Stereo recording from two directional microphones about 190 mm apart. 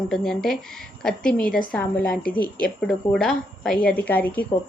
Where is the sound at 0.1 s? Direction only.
5° left (ahead or behind).